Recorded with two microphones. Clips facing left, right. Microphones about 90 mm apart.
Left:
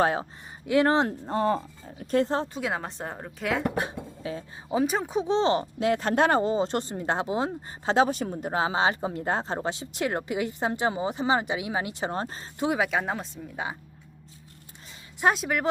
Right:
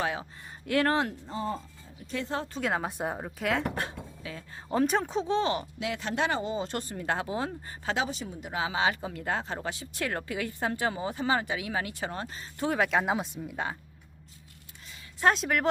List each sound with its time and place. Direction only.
0.0 s speech: 40° left (ahead or behind)
0.7 s speech: 20° left (ahead or behind)
1.2 s speech: 65° left (ahead or behind)
2.1 s speech: 35° left (ahead or behind)
2.5 s a woman's voice: 5° left (ahead or behind)
4.2 s speech: 30° left (ahead or behind)
4.7 s speech: 5° left (ahead or behind)
5.3 s speech: 30° left (ahead or behind)
5.8 s speech: 45° left (ahead or behind); by 7.9 s 25° left (ahead or behind)
7.9 s speech: 50° left (ahead or behind); by 12.1 s 20° left (ahead or behind)
12.1 s speech: 35° left (ahead or behind)
12.5 s speech: 15° left (ahead or behind)
12.8 s a woman's voice: centre (ahead or behind)
15.2 s a woman's voice: 5° left (ahead or behind)